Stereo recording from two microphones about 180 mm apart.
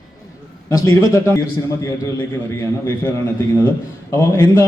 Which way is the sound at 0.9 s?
15° left (ahead or behind).